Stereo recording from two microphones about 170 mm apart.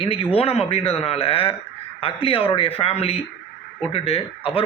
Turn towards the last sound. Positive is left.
turn(degrees=35)  # may be behind; listen again after turning